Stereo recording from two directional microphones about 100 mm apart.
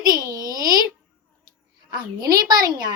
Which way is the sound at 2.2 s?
40° right (ahead or behind).